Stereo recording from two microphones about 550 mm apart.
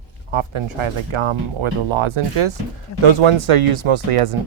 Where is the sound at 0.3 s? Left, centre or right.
Right.